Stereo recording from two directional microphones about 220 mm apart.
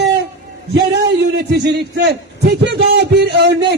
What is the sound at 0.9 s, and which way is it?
A man's voice, 50° right (ahead or behind).